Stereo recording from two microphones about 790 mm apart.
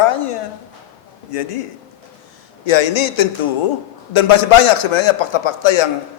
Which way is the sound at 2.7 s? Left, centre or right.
Left.